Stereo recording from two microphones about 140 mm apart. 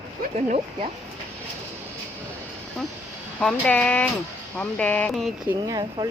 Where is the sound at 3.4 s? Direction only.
10° left (ahead or behind).